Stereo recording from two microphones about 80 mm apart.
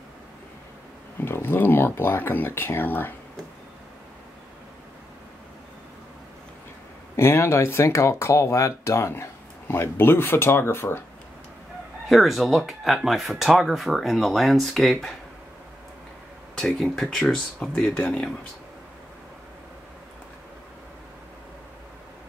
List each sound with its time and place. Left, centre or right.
1.2 s speech: left
7.2 s speech: left
12.1 s speech: centre
16.5 s speech: centre